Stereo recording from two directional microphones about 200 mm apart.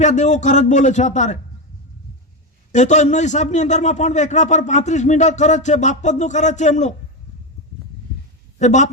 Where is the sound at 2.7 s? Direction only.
35° left (ahead or behind).